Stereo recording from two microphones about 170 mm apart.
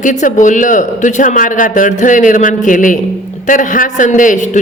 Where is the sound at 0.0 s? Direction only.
45° left (ahead or behind).